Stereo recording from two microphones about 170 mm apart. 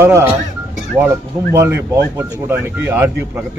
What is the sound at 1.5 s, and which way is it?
A man's voice, 15° right (ahead or behind).